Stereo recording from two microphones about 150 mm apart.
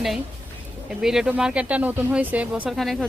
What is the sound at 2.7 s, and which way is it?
Speech, centre (ahead or behind).